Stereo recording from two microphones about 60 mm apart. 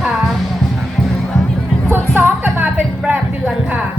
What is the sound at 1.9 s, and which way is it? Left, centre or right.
Music, right.